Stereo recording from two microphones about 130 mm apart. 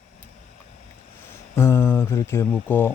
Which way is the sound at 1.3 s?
20° left (ahead or behind).